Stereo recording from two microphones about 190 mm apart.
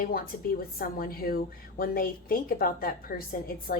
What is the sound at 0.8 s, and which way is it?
A woman's voice, 50° left (ahead or behind).